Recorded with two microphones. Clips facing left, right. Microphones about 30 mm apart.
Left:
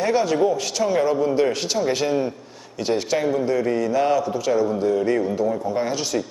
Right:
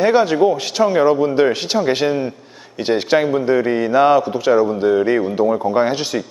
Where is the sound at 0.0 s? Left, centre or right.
Right.